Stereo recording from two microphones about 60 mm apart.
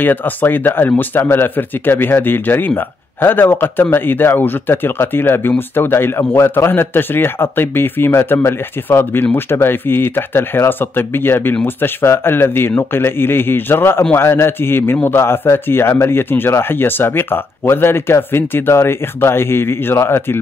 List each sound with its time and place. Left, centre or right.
0.0 s speech: left